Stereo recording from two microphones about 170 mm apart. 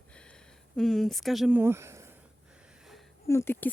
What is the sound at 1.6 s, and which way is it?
Speech, 15° right (ahead or behind).